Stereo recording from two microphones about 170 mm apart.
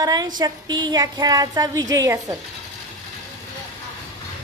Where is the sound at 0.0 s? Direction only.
20° right (ahead or behind).